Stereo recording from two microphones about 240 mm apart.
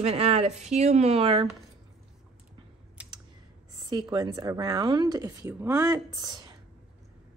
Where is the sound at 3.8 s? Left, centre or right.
Centre.